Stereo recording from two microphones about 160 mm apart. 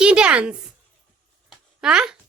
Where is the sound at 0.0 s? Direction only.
5° right (ahead or behind).